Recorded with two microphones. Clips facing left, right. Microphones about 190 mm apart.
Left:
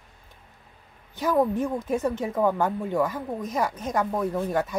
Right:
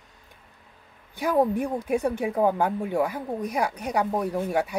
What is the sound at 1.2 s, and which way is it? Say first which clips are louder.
Speech: even; 15° right (ahead or behind).